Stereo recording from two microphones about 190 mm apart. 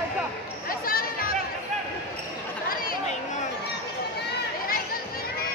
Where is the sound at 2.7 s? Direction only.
50° left (ahead or behind).